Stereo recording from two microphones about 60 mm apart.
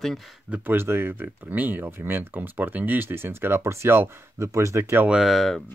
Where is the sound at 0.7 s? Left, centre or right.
Right.